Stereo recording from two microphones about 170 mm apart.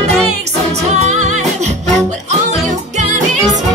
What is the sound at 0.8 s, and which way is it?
Music, 40° right (ahead or behind).